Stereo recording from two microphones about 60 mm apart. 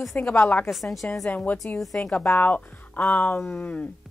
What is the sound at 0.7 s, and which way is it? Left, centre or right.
Speech, centre.